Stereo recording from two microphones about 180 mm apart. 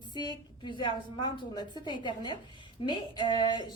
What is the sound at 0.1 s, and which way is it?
A woman's voice, 25° left (ahead or behind).